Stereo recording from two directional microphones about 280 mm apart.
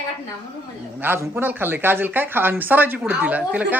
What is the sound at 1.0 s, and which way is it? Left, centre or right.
Speech, centre.